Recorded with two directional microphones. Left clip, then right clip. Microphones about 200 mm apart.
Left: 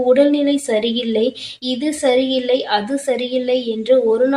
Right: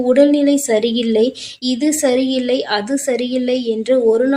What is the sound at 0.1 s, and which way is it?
A woman's voice, 45° right (ahead or behind).